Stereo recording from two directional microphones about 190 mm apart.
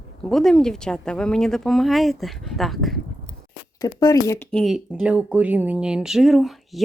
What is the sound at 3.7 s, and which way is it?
Speech, 20° left (ahead or behind).